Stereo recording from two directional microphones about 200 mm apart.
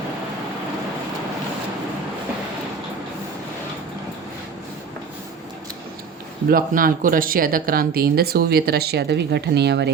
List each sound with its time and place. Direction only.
6.5 s speech: 45° right (ahead or behind)